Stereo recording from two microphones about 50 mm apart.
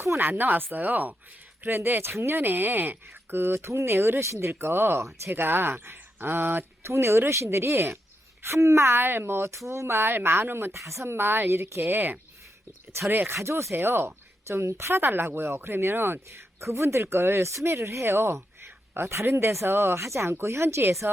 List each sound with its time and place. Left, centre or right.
0.0 s speech: right
8.4 s speech: right
10.7 s speech: right
13.1 s speech: right
13.3 s speech: right
15.0 s speech: right
15.4 s speech: right